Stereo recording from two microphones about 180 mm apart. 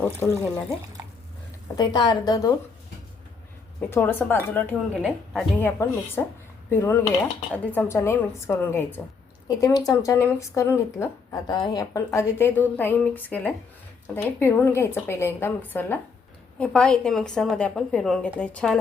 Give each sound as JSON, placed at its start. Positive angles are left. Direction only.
{"t": 0.0, "sound": "speech", "side_deg": 10}
{"t": 1.7, "sound": "a woman's voice", "side_deg": 25}
{"t": 3.8, "sound": "speech", "side_deg": 10}
{"t": 5.0, "sound": "a woman's voice", "side_deg": 0}